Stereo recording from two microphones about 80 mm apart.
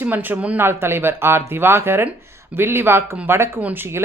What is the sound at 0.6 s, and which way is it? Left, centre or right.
Speech, right.